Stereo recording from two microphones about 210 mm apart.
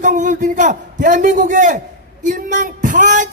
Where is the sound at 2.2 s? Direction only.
40° right (ahead or behind).